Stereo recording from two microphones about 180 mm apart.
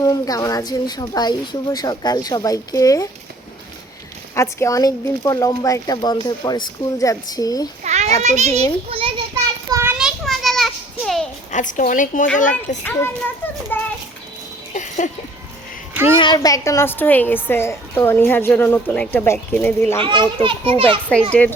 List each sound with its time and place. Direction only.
0.0 s a woman's voice: 20° left (ahead or behind)
4.4 s a woman's voice: 15° left (ahead or behind)
7.9 s children playing: 40° right (ahead or behind)
8.2 s a child's voice: 40° right (ahead or behind)
9.7 s children playing: 10° right (ahead or behind)
11.5 s a woman's voice: 45° left (ahead or behind)
12.8 s a child's voice: 10° left (ahead or behind)
14.7 s music: 45° left (ahead or behind)
16.1 s a woman's voice: 25° left (ahead or behind)
20.0 s a child's voice: 30° right (ahead or behind)